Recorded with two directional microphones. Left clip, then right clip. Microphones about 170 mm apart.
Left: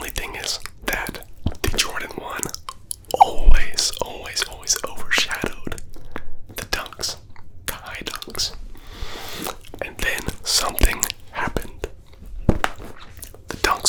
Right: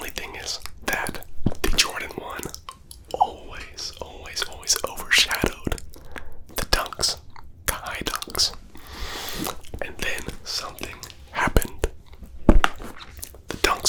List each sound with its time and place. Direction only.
0.0 s whispering: 15° left (ahead or behind)
0.9 s whispering: 5° left (ahead or behind); by 3.0 s 20° left (ahead or behind)
3.1 s chewing: 40° left (ahead or behind)
3.5 s whispering: 60° left (ahead or behind)
4.3 s whispering: 10° left (ahead or behind)
4.6 s whispering: 15° right (ahead or behind); by 5.8 s 35° right (ahead or behind)
6.1 s biting: 30° right (ahead or behind)
8.9 s squish: 15° right (ahead or behind)
9.7 s whispering: 15° left (ahead or behind)
10.4 s whispering: 50° left (ahead or behind)
10.7 s whispering: 75° left (ahead or behind)
11.5 s whispering: 30° right (ahead or behind)
12.6 s whispering: 5° right (ahead or behind)